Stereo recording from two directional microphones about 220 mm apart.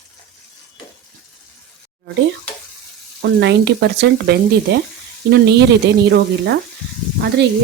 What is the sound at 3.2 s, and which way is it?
Speech, 50° right (ahead or behind).